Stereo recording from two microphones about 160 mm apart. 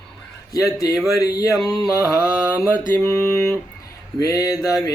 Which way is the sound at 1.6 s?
Centre (ahead or behind).